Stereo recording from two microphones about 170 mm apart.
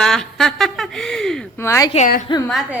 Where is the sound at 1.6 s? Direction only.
20° left (ahead or behind).